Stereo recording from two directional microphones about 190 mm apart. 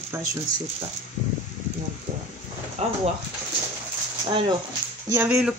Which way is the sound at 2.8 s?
35° right (ahead or behind).